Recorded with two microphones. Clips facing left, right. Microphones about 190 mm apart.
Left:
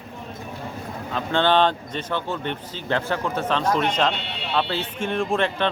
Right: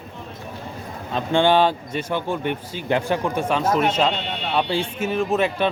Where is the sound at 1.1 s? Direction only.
15° right (ahead or behind).